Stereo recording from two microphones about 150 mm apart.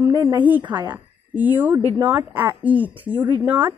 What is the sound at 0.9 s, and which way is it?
A woman's voice, 10° right (ahead or behind).